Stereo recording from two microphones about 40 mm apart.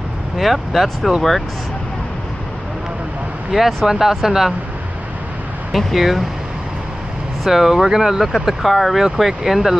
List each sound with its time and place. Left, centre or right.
0.4 s speech: centre
3.5 s speech: centre
5.7 s speech: centre
7.4 s speech: centre
8.6 s speech: centre